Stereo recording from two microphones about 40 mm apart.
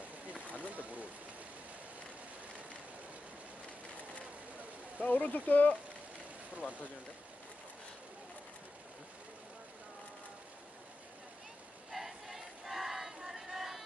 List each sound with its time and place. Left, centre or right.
0.6 s a sound: right
5.0 s speech: left
6.5 s speech: right
11.9 s crowd: centre